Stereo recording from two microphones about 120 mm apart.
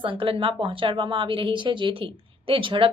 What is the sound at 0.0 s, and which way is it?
Speech, 45° right (ahead or behind).